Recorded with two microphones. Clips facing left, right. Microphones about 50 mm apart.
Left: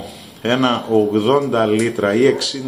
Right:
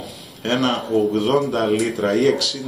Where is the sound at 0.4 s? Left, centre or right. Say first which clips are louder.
Left 4 dB; centre.